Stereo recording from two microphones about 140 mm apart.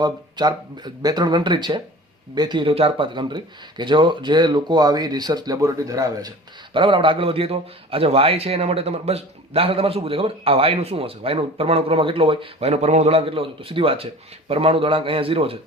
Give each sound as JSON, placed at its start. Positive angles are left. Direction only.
{"t": 0.0, "sound": "speech", "side_deg": -30}
{"t": 6.7, "sound": "a man's voice", "side_deg": -35}